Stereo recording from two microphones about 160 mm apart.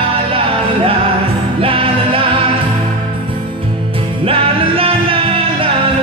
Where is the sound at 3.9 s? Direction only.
35° right (ahead or behind).